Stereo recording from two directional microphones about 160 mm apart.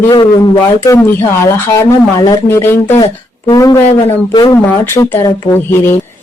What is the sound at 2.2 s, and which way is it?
Speech, 25° left (ahead or behind).